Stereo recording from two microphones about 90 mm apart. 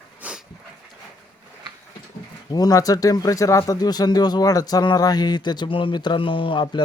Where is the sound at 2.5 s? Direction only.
45° left (ahead or behind).